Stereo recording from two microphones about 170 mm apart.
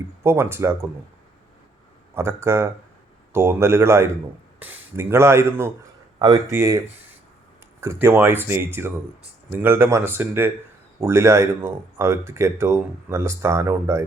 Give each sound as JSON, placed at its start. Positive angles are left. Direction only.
{"t": 0.2, "sound": "speech", "side_deg": -15}
{"t": 2.1, "sound": "speech", "side_deg": -15}